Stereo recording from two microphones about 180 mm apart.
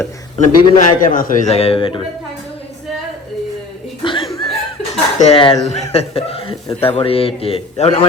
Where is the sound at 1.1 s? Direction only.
50° left (ahead or behind); by 2.0 s 30° left (ahead or behind).